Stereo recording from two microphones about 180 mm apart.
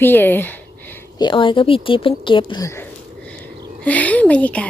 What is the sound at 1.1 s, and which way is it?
Speech, 25° left (ahead or behind).